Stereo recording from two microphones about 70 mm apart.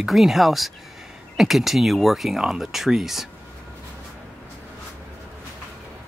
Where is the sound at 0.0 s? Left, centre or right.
Centre.